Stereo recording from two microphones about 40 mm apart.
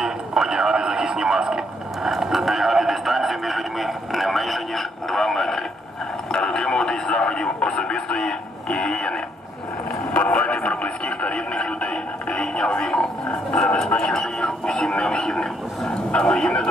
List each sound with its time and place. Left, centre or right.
0.0 s speech: centre
2.0 s a sound: centre
6.3 s radio: centre
10.1 s radio: left
13.6 s a sound: centre
16.3 s speech: left